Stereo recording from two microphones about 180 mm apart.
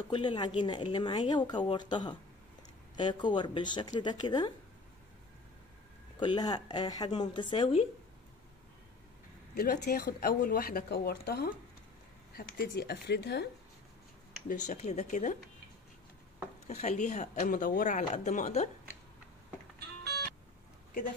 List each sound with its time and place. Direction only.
0.1 s speech: 25° left (ahead or behind)
6.1 s speech: 25° left (ahead or behind)
9.6 s speech: 55° left (ahead or behind)
14.5 s speech: 40° left (ahead or behind)
16.6 s speech: 40° left (ahead or behind)